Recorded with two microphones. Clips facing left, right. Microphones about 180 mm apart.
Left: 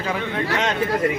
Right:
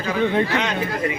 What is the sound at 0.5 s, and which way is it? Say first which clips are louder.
Speech: left 1 dB; 40° left (ahead or behind).